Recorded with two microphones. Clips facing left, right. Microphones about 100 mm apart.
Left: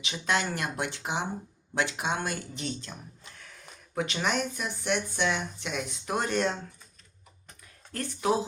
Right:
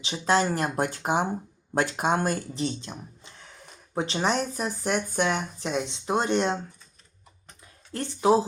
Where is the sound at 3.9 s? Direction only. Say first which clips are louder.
Right 4 dB; 30° right (ahead or behind).